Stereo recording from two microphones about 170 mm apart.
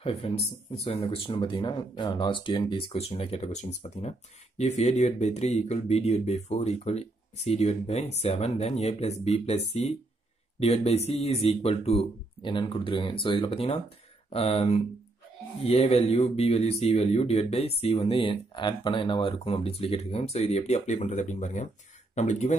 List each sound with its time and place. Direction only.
0.0 s speech: 40° left (ahead or behind)